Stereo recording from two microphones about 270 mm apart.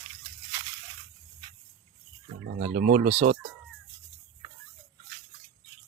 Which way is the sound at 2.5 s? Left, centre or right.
Right.